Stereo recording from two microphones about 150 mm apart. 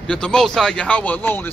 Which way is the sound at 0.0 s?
5° left (ahead or behind).